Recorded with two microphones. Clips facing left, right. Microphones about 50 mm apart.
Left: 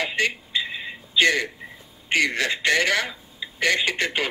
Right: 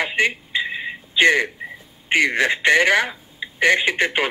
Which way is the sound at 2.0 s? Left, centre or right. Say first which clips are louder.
Right 4 dB; right.